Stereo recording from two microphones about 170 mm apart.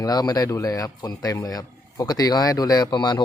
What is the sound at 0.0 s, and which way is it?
Speech, 20° left (ahead or behind).